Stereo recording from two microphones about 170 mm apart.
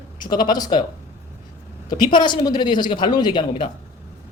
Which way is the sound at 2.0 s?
25° left (ahead or behind).